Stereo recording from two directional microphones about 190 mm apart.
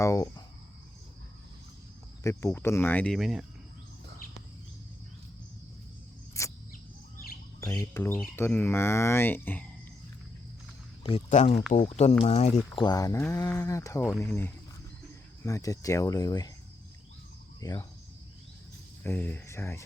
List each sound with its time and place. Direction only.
0.0 s speech: 15° left (ahead or behind)
2.2 s speech: 15° left (ahead or behind)
6.4 s cricket: 15° left (ahead or behind)
7.6 s speech: 15° left (ahead or behind)
11.0 s speech: 35° left (ahead or behind)
12.8 s speech: 20° left (ahead or behind)
17.6 s speech: 20° left (ahead or behind)
19.0 s speech: 10° left (ahead or behind)